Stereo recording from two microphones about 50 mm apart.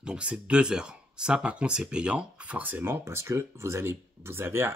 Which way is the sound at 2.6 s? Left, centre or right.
Right.